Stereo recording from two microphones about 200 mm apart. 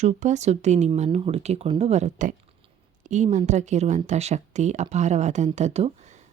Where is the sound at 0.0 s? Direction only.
35° right (ahead or behind).